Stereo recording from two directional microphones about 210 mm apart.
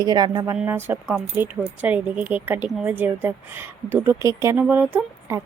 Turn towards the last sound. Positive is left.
turn(degrees=-10)  # may be behind; listen again after turning